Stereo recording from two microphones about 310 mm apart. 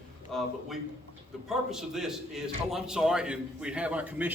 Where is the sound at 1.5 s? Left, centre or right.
Centre.